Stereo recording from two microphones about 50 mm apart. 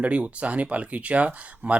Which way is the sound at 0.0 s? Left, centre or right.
Right.